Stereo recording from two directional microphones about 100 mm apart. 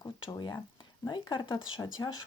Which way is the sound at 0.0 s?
45° left (ahead or behind).